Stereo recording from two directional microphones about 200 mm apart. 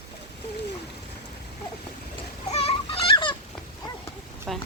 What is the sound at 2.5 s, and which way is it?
Fowl, 30° left (ahead or behind).